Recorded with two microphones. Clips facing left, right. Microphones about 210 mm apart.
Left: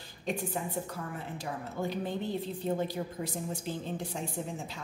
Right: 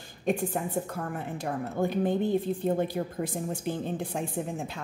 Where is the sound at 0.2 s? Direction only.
55° right (ahead or behind).